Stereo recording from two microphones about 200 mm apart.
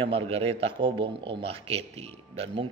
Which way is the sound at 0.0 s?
25° right (ahead or behind).